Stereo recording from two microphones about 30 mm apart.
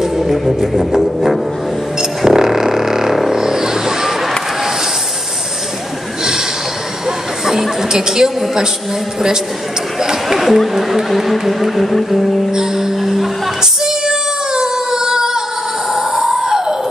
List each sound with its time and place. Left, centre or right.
0.0 s music: centre
2.0 s music: centre
3.3 s vehicle: centre
7.9 s music: centre
10.3 s speech: centre
10.7 s a sound: centre
12.4 s music: centre
13.0 s music: centre
13.6 s female singing: centre
15.9 s a sound: centre